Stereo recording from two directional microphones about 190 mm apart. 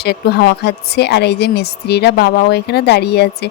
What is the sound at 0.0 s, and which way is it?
A woman's voice, 60° left (ahead or behind).